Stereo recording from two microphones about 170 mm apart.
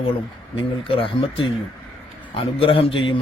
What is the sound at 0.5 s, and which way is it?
A man's voice, 30° left (ahead or behind).